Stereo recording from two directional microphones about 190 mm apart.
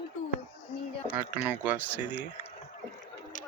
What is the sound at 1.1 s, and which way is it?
Speech, 10° right (ahead or behind).